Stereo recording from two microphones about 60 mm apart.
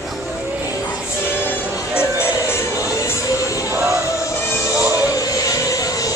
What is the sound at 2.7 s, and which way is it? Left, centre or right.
Music, left.